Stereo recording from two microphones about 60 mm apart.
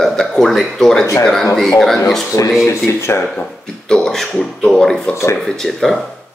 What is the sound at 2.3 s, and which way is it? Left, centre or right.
Speech, left.